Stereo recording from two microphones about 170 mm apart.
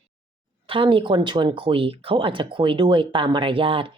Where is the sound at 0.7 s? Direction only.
30° right (ahead or behind).